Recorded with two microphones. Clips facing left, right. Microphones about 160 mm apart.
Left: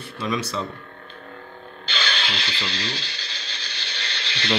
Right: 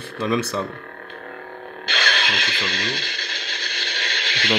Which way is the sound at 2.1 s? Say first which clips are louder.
Right 3 dB; 90° right.